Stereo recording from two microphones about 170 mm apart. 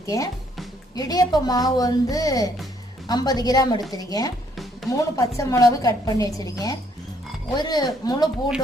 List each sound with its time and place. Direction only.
0.0 s speech: 20° left (ahead or behind)